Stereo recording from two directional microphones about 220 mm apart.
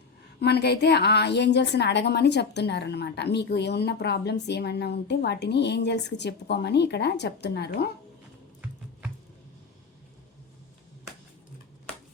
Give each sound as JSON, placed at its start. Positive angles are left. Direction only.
{"t": 0.3, "sound": "a woman's voice", "side_deg": 50}